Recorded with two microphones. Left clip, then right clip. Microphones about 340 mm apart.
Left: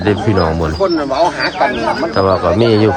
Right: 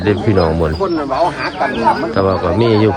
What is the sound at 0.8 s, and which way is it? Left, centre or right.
Speech, left.